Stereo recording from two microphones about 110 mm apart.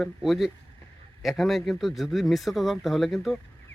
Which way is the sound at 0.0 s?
Centre (ahead or behind).